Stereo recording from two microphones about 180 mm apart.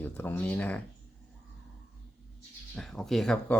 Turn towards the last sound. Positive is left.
turn(degrees=5)  # may be behind; listen again after turning